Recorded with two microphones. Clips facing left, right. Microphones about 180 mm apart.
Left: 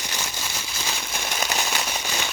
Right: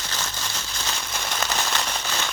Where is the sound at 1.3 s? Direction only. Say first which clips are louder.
Even; 10° left (ahead or behind).